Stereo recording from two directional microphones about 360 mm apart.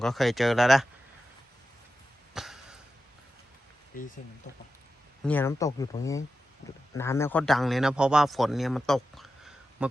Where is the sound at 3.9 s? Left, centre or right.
Left.